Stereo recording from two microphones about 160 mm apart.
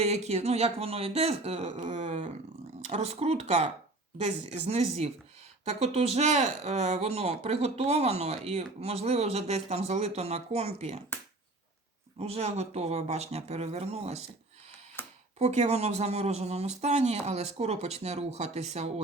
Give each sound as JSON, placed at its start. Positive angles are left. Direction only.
{"t": 0.0, "sound": "speech", "side_deg": -45}
{"t": 12.2, "sound": "speech", "side_deg": -40}
{"t": 15.0, "sound": "a sound", "side_deg": 15}
{"t": 15.4, "sound": "speech", "side_deg": -45}